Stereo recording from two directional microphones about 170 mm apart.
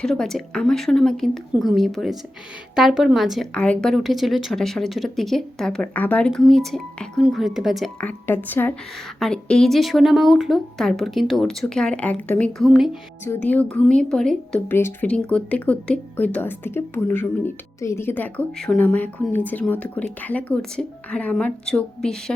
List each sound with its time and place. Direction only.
0.0 s a woman's voice: 5° left (ahead or behind)
8.3 s a woman's voice: 10° left (ahead or behind)
13.2 s a woman's voice: 10° left (ahead or behind)